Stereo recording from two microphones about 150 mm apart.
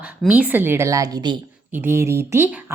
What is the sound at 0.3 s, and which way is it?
Speech, 10° right (ahead or behind).